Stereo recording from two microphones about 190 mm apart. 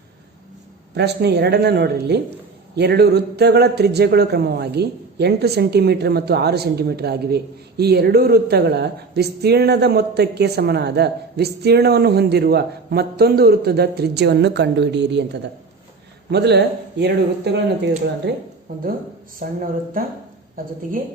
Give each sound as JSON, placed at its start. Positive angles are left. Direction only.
{"t": 0.9, "sound": "a man's voice", "side_deg": -60}
{"t": 16.3, "sound": "a man's voice", "side_deg": -60}
{"t": 18.7, "sound": "speech", "side_deg": -50}